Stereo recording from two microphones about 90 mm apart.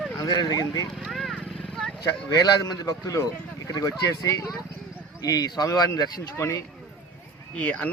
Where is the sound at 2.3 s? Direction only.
45° left (ahead or behind).